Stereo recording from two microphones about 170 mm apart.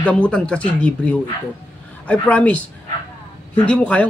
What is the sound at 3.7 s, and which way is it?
Speech, 10° left (ahead or behind).